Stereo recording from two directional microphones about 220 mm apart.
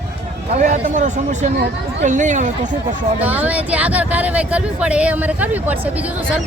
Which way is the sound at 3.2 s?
5° right (ahead or behind).